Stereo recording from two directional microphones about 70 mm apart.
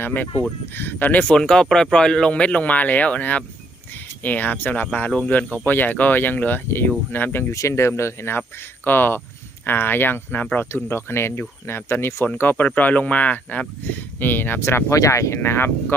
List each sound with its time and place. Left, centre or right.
0.0 s speech: left
1.4 s speech: centre; by 7.5 s left
7.5 s speech: left
14.9 s speech: left
15.4 s speech: left